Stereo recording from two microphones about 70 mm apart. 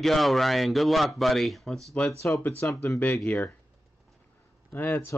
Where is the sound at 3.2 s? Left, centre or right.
Left.